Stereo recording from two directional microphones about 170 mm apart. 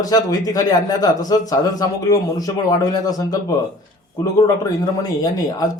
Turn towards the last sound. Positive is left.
turn(degrees=20)  # may be behind; listen again after turning